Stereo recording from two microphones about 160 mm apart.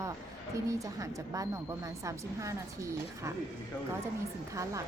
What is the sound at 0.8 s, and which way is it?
A woman's voice, 20° right (ahead or behind).